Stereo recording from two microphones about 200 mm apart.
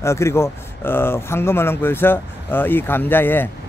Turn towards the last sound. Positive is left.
turn(degrees=10)  # may be behind; listen again after turning